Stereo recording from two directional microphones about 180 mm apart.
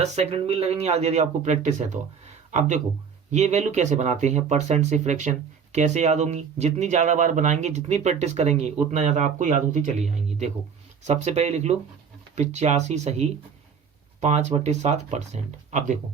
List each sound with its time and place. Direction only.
0.0 s speech: 35° right (ahead or behind)